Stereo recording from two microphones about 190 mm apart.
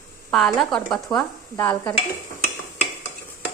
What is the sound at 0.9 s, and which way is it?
A woman's voice, 20° left (ahead or behind).